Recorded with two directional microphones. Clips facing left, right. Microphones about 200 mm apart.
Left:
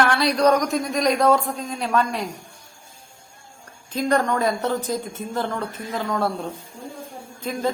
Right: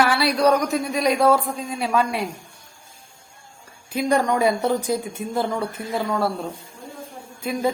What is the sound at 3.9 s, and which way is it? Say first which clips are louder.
Speech: right 1 dB; 10° right (ahead or behind).